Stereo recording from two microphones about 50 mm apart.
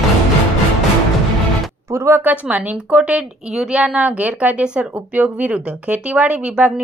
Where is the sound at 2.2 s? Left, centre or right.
Right.